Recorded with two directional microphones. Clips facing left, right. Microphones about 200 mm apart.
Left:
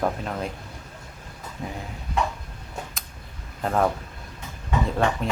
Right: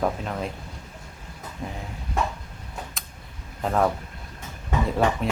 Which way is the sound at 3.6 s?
Centre (ahead or behind).